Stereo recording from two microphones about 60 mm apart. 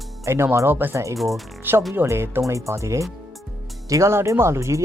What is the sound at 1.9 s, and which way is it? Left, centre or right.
Speech, right.